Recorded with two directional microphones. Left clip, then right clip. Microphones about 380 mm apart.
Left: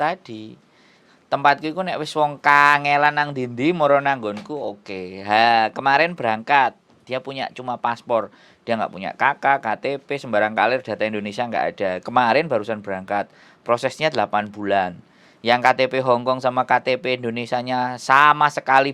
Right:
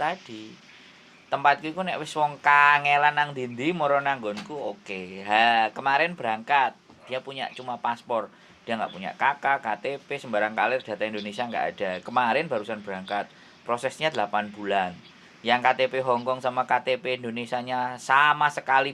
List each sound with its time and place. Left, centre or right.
1.3 s speech: left